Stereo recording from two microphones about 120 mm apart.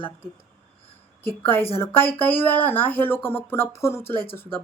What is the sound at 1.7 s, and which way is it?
A woman's voice, 20° left (ahead or behind).